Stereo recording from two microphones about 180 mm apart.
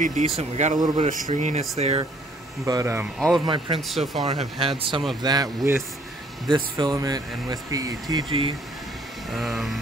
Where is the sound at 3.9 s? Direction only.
Centre (ahead or behind).